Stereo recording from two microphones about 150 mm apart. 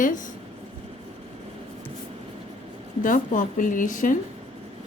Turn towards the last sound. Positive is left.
turn(degrees=60)  # may be behind; listen again after turning